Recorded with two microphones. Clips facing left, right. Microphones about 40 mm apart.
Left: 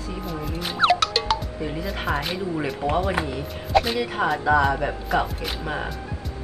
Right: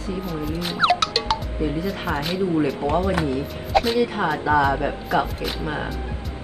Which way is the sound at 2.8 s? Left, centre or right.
Right.